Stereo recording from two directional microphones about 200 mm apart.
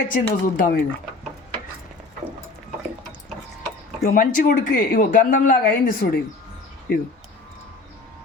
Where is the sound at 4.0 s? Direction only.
45° left (ahead or behind).